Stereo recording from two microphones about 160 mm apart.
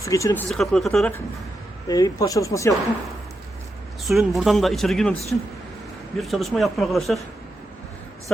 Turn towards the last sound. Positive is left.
turn(degrees=0)  # may be behind; listen again after turning